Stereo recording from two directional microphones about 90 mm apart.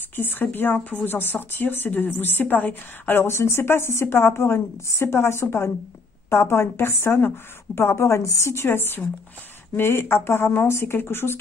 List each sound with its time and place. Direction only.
0.1 s speech: 25° left (ahead or behind)